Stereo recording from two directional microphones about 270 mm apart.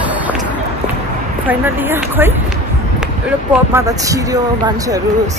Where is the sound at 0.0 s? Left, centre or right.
Centre.